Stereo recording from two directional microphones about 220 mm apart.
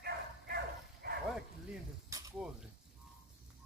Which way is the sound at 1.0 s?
45° right (ahead or behind).